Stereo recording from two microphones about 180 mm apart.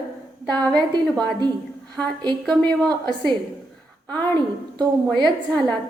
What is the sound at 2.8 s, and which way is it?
Speech, 20° right (ahead or behind).